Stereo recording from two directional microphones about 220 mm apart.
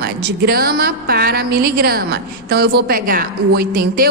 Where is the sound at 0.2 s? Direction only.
45° right (ahead or behind).